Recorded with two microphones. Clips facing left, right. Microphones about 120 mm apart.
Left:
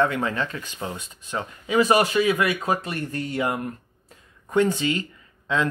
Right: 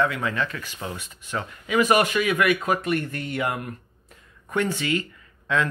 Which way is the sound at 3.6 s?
30° left (ahead or behind).